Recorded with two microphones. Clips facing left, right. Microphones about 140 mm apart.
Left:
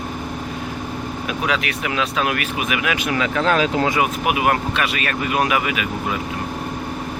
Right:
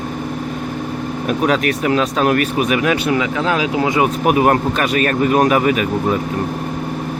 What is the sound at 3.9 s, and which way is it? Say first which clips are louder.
Speech: right 5 dB; 35° right (ahead or behind).